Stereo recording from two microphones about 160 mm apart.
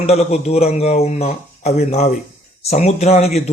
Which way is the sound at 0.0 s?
45° left (ahead or behind).